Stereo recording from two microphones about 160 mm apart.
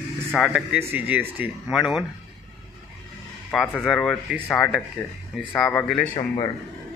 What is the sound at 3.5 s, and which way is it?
A man's voice, 5° left (ahead or behind).